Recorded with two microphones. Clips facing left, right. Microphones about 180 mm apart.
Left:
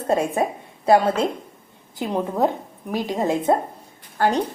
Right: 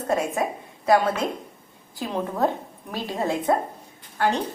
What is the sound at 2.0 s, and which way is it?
Speech, 15° left (ahead or behind).